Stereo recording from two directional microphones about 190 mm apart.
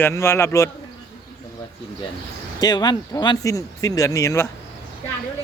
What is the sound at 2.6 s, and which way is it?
Speech, 20° left (ahead or behind).